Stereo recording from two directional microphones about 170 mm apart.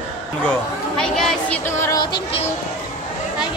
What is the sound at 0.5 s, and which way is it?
Chatter, 5° left (ahead or behind).